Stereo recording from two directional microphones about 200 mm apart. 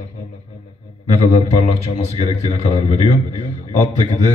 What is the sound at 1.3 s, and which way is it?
Speech, 30° left (ahead or behind).